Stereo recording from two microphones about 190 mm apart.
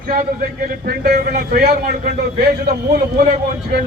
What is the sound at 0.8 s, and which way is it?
A man's voice, 55° right (ahead or behind).